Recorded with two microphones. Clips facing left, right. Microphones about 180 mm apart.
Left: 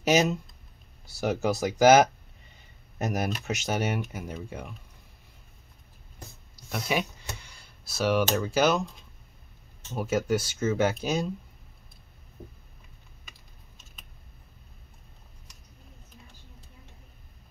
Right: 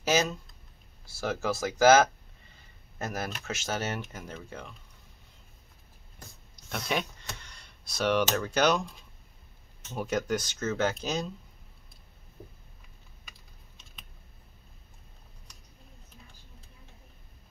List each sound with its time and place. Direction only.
0.0 s speech: 20° left (ahead or behind)
6.5 s computer keyboard: 5° left (ahead or behind)
8.4 s speech: 5° left (ahead or behind)
9.9 s speech: 5° left (ahead or behind)